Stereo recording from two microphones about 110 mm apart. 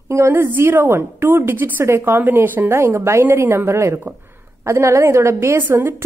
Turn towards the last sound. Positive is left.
turn(degrees=-20)  # may be behind; listen again after turning